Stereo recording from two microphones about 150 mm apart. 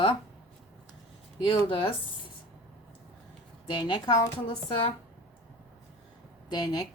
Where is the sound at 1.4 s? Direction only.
35° left (ahead or behind).